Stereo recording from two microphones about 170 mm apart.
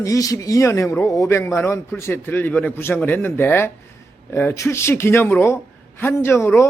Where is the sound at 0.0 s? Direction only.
20° left (ahead or behind).